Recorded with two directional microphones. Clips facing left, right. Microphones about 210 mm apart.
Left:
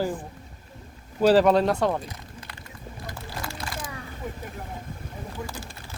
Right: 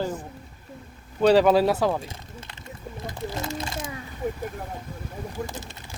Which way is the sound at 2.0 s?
25° right (ahead or behind).